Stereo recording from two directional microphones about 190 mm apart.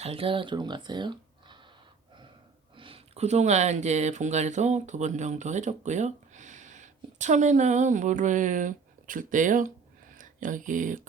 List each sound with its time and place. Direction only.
0.0 s speech: 30° right (ahead or behind)
2.7 s speech: 30° right (ahead or behind)